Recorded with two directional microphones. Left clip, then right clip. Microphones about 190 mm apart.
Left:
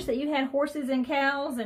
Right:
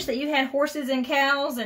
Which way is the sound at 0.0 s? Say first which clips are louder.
Right 3 dB; centre (ahead or behind).